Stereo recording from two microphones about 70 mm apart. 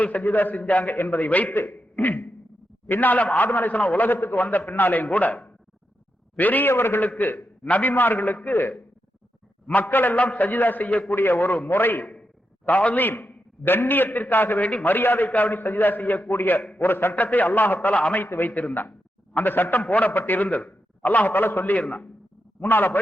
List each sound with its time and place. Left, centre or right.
0.0 s a man's voice: left